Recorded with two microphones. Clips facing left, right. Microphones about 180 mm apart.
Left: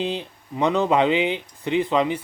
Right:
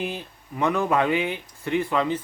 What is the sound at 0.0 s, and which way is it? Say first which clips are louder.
Speech: left 4 dB; 20° left (ahead or behind).